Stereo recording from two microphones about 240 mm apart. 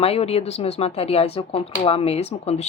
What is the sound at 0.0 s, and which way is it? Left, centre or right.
Speech, left.